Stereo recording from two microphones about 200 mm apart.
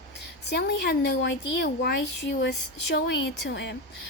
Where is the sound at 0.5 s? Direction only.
60° left (ahead or behind).